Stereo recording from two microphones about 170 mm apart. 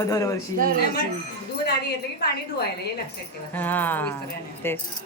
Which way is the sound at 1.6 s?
70° left (ahead or behind).